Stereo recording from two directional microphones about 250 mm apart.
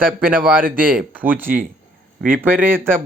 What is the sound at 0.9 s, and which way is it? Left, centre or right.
A man's voice, centre.